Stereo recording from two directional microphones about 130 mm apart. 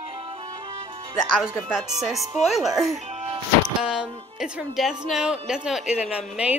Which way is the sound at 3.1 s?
60° right (ahead or behind).